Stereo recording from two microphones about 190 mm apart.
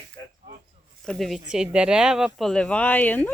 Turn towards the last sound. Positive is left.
turn(degrees=10)  # may be behind; listen again after turning